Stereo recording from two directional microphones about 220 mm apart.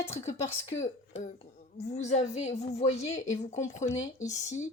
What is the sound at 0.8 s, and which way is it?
A woman's voice, 30° left (ahead or behind).